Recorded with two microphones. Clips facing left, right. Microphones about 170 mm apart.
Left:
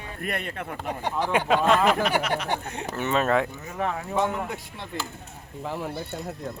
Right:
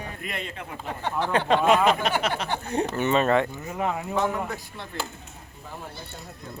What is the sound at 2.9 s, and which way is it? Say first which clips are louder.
Speech: even; centre (ahead or behind).